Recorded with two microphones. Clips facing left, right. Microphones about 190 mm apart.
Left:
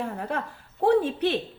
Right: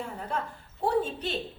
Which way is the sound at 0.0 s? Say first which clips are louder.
Left 4 dB; 65° left (ahead or behind).